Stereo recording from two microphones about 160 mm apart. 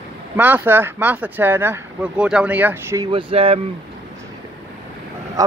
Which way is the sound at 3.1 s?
35° right (ahead or behind).